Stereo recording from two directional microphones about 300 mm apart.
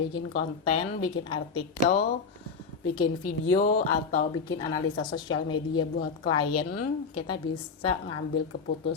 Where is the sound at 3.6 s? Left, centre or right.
Left.